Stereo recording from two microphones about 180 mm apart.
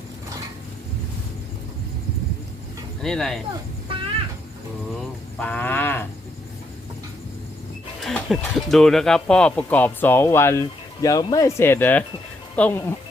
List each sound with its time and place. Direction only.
3.0 s speech: centre (ahead or behind)
5.4 s wild animals: 10° left (ahead or behind)
8.0 s speech: centre (ahead or behind)